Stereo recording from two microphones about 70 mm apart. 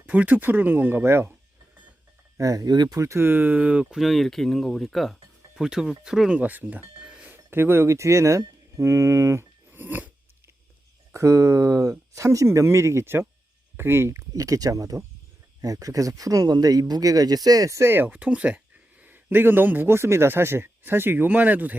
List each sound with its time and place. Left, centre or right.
0.0 s speech: right
2.4 s speech: right
2.6 s speech: right
3.0 s speech: right; by 4.0 s centre
4.0 s speech: centre
6.3 s speech: right
7.0 s a sound: centre
7.3 s speech: right
11.1 s speech: right
18.1 s speech: centre